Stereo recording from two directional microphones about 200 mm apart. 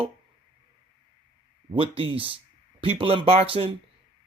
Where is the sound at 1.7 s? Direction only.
25° right (ahead or behind).